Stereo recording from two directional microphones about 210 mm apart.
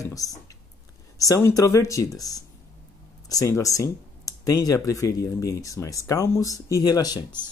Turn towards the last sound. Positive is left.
turn(degrees=20)  # may be behind; listen again after turning